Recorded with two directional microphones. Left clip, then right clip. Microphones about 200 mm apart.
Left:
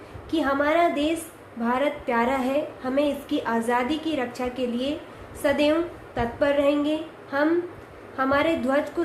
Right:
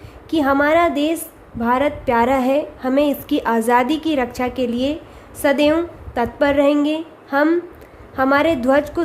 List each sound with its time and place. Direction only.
0.3 s a woman's voice: 50° right (ahead or behind)